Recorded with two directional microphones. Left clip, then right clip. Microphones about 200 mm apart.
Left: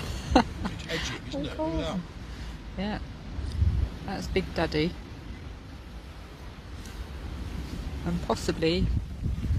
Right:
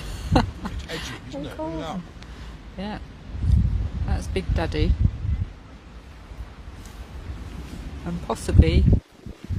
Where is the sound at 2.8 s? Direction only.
Centre (ahead or behind).